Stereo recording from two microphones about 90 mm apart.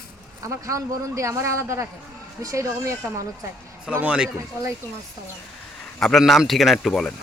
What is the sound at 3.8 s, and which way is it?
Speech, 10° right (ahead or behind).